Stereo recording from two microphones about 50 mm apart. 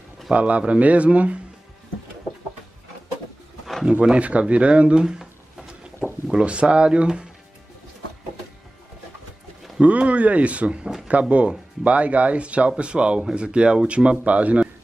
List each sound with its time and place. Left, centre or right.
0.3 s speech: right
4.0 s speech: right
5.2 s a sound: centre
6.2 s speech: right
9.8 s speech: right